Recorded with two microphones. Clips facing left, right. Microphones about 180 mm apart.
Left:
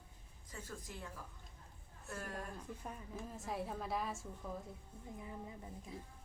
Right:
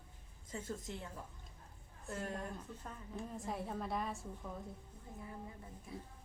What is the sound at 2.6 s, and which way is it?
Speech, 10° left (ahead or behind).